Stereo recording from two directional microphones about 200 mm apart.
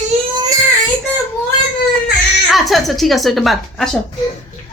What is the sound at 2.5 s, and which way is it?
Speech, centre (ahead or behind).